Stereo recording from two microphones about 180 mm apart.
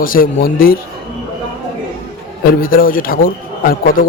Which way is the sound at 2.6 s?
50° left (ahead or behind).